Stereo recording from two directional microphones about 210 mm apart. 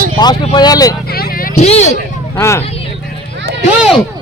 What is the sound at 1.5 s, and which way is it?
Speech, 30° left (ahead or behind).